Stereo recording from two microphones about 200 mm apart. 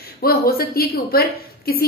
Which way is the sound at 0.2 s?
50° left (ahead or behind).